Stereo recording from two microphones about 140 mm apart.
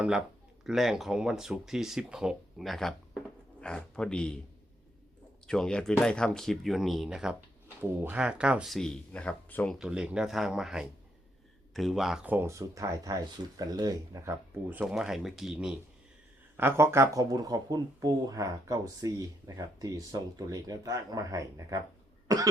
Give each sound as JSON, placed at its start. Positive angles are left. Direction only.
{"t": 0.6, "sound": "speech", "side_deg": 0}
{"t": 5.5, "sound": "speech", "side_deg": 5}
{"t": 9.7, "sound": "speech", "side_deg": -5}
{"t": 16.6, "sound": "speech", "side_deg": -15}